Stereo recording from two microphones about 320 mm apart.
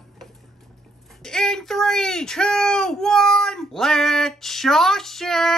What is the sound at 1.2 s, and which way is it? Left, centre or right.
Speech, centre.